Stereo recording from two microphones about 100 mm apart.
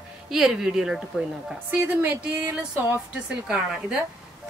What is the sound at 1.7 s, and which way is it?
A woman's voice, 15° right (ahead or behind).